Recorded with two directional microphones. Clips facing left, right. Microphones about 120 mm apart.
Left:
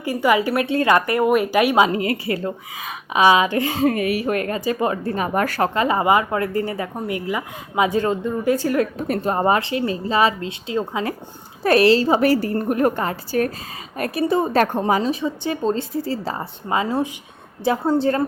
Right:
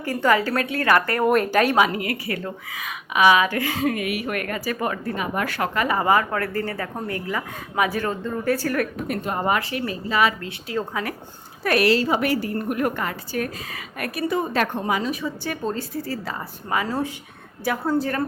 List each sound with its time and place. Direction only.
0.0 s a woman's voice: 15° left (ahead or behind)
1.2 s a woman's voice: 5° left (ahead or behind)
1.8 s a woman's voice: 25° left (ahead or behind)
3.8 s a woman's voice: 35° left (ahead or behind)
5.1 s a woman's voice: 45° left (ahead or behind); by 8.9 s 20° left (ahead or behind)
9.0 s a woman's voice: 35° left (ahead or behind)